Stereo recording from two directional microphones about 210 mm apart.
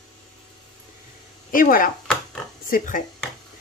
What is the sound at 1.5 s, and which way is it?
Speech, 40° left (ahead or behind).